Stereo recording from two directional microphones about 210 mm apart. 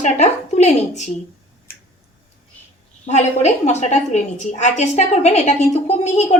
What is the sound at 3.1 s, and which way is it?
A woman's voice, 30° left (ahead or behind).